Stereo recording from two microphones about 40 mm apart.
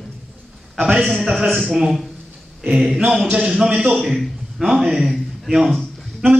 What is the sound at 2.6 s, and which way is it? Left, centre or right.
A man's voice, centre.